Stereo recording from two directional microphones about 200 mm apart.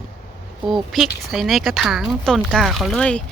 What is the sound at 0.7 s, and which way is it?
Speech, centre (ahead or behind).